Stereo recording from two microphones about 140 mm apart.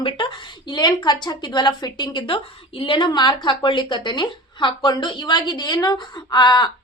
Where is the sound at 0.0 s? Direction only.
40° left (ahead or behind).